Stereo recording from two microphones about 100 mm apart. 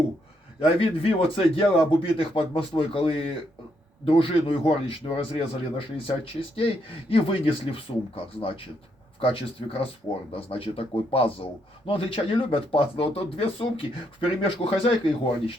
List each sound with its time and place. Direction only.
0.6 s speech: 70° left (ahead or behind)